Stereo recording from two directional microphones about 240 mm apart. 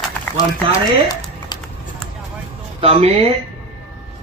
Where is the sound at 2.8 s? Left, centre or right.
Right.